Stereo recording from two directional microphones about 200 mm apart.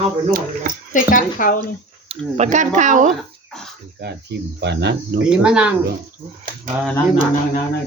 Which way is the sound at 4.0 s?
55° right (ahead or behind).